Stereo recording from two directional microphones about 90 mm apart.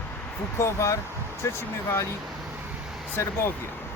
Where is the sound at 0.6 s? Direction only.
35° left (ahead or behind).